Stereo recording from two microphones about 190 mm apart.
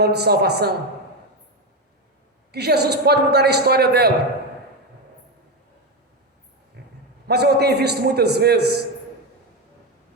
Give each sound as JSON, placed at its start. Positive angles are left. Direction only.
{"t": 0.0, "sound": "a man's voice", "side_deg": -60}
{"t": 2.5, "sound": "a man's voice", "side_deg": -60}
{"t": 6.8, "sound": "dog", "side_deg": -60}
{"t": 7.3, "sound": "a man's voice", "side_deg": -60}